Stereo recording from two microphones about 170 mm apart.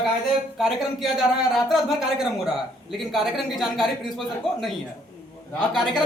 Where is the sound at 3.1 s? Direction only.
Centre (ahead or behind).